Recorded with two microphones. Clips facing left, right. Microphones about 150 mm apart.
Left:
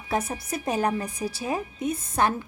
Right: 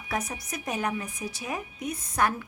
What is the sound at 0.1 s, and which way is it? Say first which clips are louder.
A woman's voice: left 5 dB; 30° left (ahead or behind).